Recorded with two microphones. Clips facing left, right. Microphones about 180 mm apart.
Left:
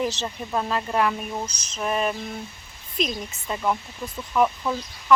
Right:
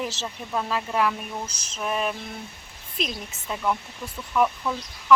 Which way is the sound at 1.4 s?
40° left (ahead or behind).